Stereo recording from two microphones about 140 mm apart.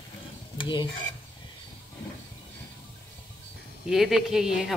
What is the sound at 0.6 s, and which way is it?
Stir, 35° left (ahead or behind).